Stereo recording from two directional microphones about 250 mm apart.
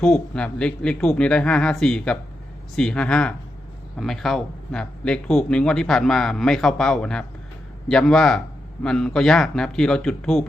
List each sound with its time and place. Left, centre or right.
0.0 s speech: centre